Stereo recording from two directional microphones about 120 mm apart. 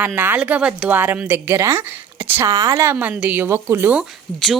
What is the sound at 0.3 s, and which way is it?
Speech, 10° right (ahead or behind).